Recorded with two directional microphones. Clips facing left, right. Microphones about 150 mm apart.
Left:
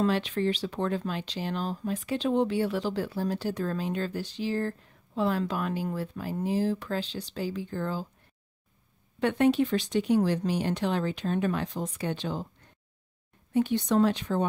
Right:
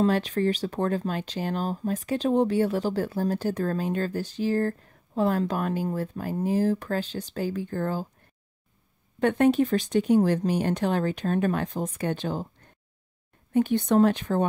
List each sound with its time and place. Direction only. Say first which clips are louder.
0.0 s speech: right 3 dB; 45° right (ahead or behind)
9.2 s speech: right 3 dB; 45° right (ahead or behind)
13.5 s speech: right 3 dB; 50° right (ahead or behind)